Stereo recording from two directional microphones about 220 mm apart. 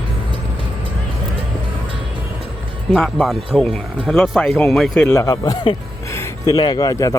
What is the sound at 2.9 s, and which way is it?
Speech, centre (ahead or behind).